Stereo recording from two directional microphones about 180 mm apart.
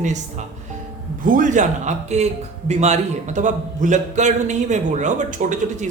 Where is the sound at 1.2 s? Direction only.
45° right (ahead or behind).